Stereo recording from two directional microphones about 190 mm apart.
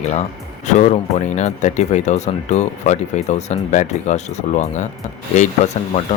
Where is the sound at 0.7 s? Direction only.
40° left (ahead or behind).